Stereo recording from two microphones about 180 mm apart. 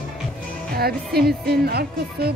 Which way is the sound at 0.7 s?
60° right (ahead or behind).